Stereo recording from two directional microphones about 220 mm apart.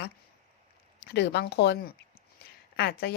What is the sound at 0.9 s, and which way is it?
A woman's voice, 50° left (ahead or behind).